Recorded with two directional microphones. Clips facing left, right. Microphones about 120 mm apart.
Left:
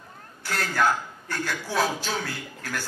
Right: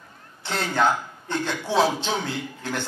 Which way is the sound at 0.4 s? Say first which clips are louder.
Right 2 dB; 25° right (ahead or behind).